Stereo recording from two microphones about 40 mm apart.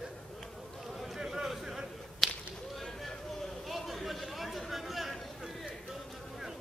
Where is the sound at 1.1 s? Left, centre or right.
Centre.